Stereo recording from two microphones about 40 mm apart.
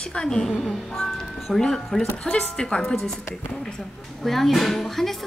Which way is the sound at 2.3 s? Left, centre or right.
Left.